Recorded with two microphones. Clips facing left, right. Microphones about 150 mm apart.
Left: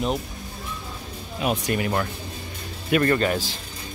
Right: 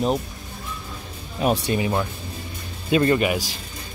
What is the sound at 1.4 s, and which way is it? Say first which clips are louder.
Speech: right 4 dB; 35° right (ahead or behind).